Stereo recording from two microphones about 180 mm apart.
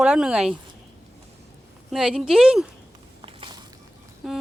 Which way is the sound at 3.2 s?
25° right (ahead or behind).